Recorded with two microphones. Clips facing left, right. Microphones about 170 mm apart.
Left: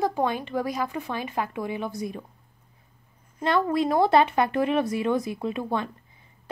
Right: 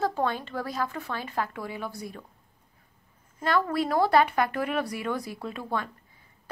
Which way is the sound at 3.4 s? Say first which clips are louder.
Left 3 dB; 25° left (ahead or behind).